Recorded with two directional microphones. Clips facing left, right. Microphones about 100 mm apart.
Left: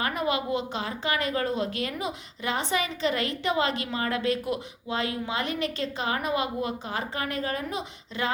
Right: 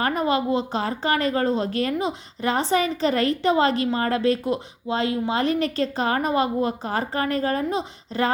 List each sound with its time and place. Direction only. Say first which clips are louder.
0.0 s a woman's voice: right 5 dB; 35° right (ahead or behind)